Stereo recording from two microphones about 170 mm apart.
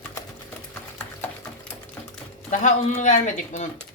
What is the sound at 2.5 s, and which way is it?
Speech, 45° left (ahead or behind).